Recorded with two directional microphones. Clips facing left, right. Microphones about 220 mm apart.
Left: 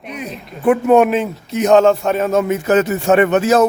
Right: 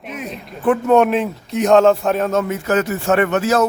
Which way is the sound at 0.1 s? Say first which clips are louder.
Left 1 dB; centre (ahead or behind).